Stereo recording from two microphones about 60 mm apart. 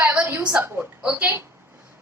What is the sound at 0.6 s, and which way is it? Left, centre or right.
Speech, right.